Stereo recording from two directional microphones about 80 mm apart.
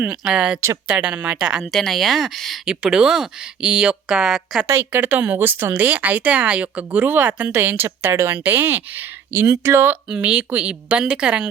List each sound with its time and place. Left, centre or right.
0.0 s a woman's voice: centre
1.6 s a woman's voice: centre
4.9 s speech: centre
10.1 s a woman's voice: centre